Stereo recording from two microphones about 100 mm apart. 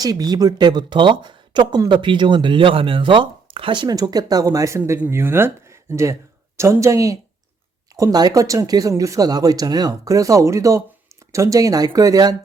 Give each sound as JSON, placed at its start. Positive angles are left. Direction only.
{"t": 0.0, "sound": "speech", "side_deg": -40}
{"t": 4.9, "sound": "speech", "side_deg": -20}